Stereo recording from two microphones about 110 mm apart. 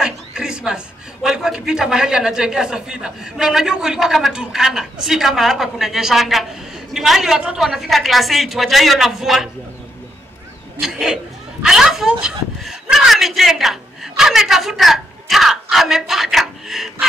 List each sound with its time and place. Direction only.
0.0 s a man's voice: 5° right (ahead or behind)
10.8 s a woman's voice: centre (ahead or behind)